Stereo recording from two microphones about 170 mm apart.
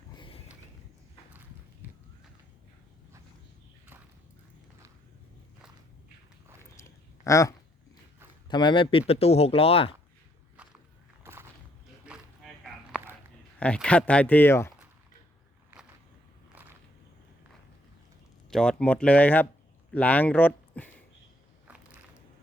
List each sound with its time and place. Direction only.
0.2 s walk: 30° left (ahead or behind)
6.7 s a sound: 20° left (ahead or behind)
8.4 s speech: 25° left (ahead or behind)
10.6 s walk: 5° right (ahead or behind)
11.2 s a sound: 15° right (ahead or behind)
12.0 s a sound: 5° right (ahead or behind)
13.6 s speech: 5° left (ahead or behind)
18.5 s speech: 5° left (ahead or behind)
21.7 s biting: 10° right (ahead or behind)